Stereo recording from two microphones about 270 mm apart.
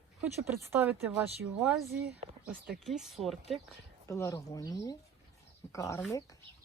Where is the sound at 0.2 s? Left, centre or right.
Centre.